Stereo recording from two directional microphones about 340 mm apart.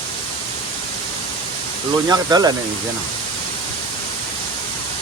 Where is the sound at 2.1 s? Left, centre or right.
Centre.